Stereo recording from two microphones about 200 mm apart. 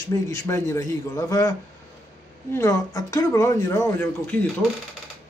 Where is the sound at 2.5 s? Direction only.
15° left (ahead or behind).